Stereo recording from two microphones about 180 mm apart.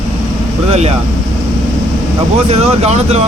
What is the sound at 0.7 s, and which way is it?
Speech, 35° right (ahead or behind).